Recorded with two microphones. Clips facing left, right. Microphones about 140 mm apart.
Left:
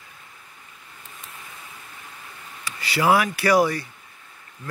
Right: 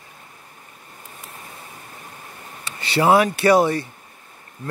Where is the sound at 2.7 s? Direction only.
25° right (ahead or behind).